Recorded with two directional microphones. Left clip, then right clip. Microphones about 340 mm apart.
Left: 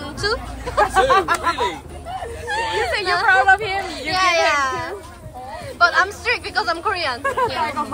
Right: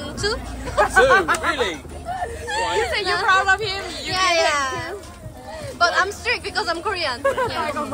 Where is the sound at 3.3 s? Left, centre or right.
Left.